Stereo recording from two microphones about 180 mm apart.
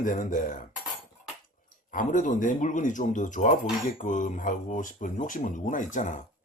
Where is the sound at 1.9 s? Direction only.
45° left (ahead or behind).